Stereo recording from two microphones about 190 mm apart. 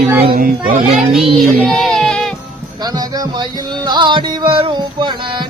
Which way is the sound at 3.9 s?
25° right (ahead or behind).